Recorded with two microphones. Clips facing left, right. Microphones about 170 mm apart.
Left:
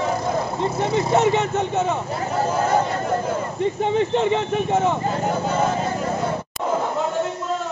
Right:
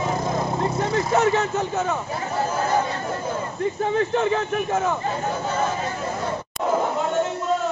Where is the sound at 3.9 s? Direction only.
25° left (ahead or behind).